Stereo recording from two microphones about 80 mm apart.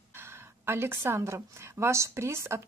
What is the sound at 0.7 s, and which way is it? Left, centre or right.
A woman's voice, right.